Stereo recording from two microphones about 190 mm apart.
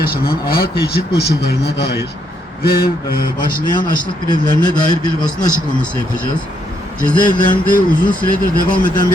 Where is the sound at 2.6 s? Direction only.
55° left (ahead or behind).